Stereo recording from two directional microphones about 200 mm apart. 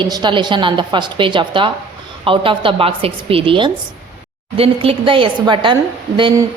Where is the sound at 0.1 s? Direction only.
25° right (ahead or behind).